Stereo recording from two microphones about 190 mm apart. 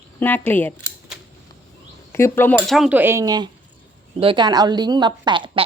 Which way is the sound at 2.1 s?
15° left (ahead or behind).